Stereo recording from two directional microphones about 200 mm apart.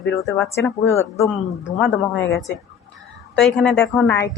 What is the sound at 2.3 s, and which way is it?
Speech, 60° left (ahead or behind).